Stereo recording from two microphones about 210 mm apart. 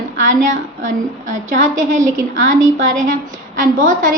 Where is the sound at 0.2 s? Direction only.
35° right (ahead or behind).